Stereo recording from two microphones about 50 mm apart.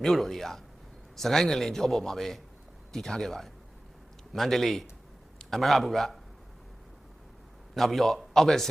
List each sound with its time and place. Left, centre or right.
0.0 s a man's voice: centre
7.7 s a man's voice: centre